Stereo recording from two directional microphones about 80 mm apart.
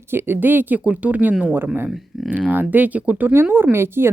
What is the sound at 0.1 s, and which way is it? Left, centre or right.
Speech, right.